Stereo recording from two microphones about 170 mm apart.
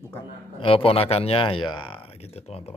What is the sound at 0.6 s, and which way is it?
Speech, 35° left (ahead or behind).